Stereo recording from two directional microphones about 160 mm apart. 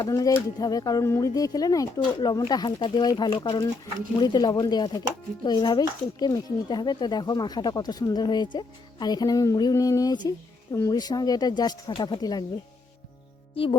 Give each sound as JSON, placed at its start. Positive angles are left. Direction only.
{"t": 0.0, "sound": "speech", "side_deg": 20}